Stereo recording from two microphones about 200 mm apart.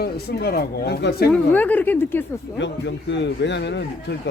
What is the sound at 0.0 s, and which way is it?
Speech, 50° left (ahead or behind).